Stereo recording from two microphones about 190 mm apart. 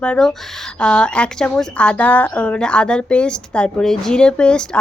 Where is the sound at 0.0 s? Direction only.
5° left (ahead or behind).